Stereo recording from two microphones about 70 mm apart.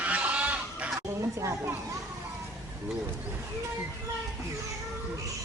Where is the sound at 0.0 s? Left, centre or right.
Centre.